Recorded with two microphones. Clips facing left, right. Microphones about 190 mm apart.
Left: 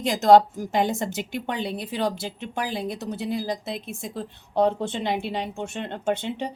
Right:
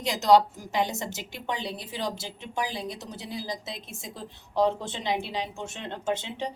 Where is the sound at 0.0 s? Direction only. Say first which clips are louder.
Left 4 dB; 50° left (ahead or behind).